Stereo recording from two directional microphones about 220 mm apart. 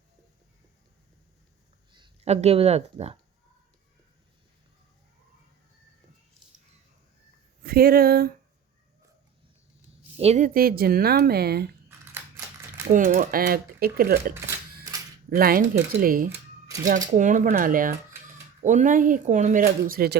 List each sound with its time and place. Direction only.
1.9 s speech: 25° right (ahead or behind)
7.6 s speech: 45° right (ahead or behind)
10.2 s speech: 30° right (ahead or behind)
12.9 s speech: 35° right (ahead or behind)
14.8 s camera: 15° right (ahead or behind)
15.4 s speech: 40° right (ahead or behind)
16.3 s music: 15° right (ahead or behind)
16.8 s speech: 35° right (ahead or behind)